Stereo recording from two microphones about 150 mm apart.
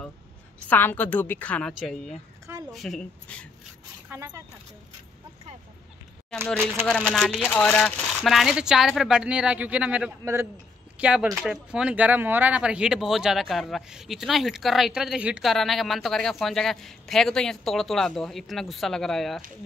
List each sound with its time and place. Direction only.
0.7 s a woman's voice: 10° left (ahead or behind)
4.1 s a man's voice: 10° right (ahead or behind)
6.4 s a woman's voice: 5° left (ahead or behind); by 10.5 s 15° right (ahead or behind)
11.0 s speech: 5° right (ahead or behind)